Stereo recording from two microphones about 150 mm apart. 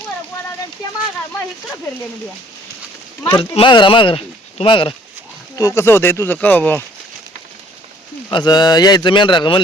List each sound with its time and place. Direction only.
3.2 s speech: 35° left (ahead or behind)
5.5 s speech: 20° left (ahead or behind)
8.3 s speech: 30° left (ahead or behind)